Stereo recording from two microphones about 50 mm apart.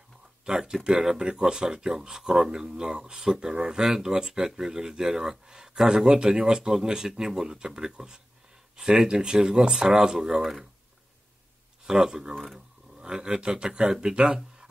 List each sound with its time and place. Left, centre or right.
0.5 s speech: centre
11.8 s speech: centre